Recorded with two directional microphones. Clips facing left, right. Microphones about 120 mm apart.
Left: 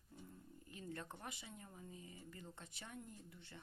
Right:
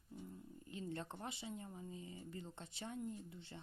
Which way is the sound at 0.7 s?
25° right (ahead or behind).